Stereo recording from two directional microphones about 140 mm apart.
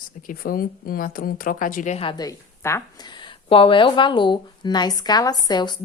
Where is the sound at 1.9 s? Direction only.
40° left (ahead or behind).